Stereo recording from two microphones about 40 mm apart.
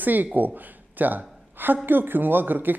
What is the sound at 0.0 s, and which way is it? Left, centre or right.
Speech, right.